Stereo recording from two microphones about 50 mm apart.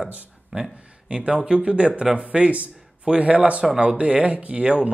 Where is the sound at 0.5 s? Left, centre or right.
Centre.